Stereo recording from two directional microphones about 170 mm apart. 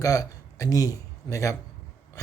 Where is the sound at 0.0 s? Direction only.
20° left (ahead or behind).